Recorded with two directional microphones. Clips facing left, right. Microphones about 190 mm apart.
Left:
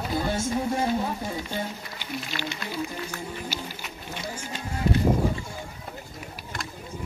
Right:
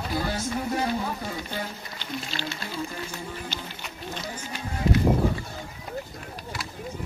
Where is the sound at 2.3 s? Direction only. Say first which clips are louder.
Left 2 dB; 30° right (ahead or behind).